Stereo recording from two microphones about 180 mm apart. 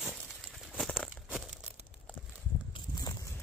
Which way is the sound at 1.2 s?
5° right (ahead or behind).